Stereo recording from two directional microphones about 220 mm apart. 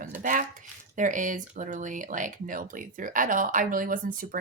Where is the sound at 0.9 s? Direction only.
35° right (ahead or behind).